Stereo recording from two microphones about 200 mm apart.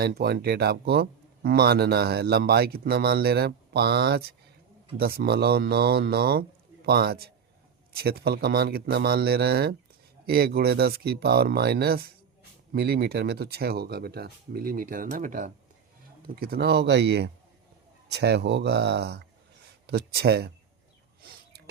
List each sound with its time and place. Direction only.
0.0 s speech: 50° right (ahead or behind)